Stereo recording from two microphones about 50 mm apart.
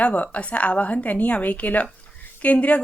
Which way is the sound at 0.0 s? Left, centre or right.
Left.